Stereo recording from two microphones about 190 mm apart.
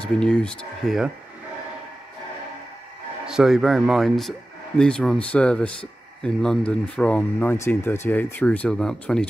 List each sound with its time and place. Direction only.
0.0 s speech: 5° left (ahead or behind)
3.3 s speech: centre (ahead or behind)